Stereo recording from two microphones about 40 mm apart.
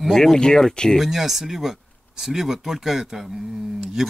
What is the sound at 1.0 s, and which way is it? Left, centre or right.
Speech, centre.